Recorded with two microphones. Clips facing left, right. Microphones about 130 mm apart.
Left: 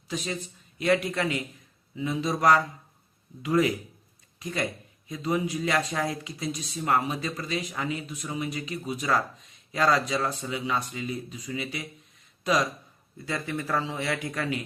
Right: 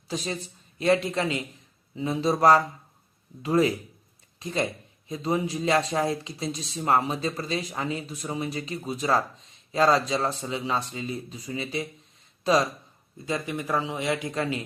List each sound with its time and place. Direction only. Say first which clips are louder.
0.1 s speech: right 1 dB; 35° right (ahead or behind)
13.1 s speech: right 2 dB; 20° right (ahead or behind)